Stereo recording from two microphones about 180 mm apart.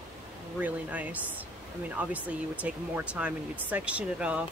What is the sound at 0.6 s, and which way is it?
Speech, 10° right (ahead or behind).